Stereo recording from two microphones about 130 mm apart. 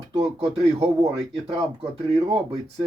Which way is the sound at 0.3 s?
50° right (ahead or behind).